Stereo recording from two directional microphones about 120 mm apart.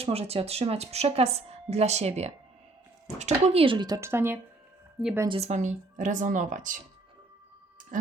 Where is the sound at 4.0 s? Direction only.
20° right (ahead or behind).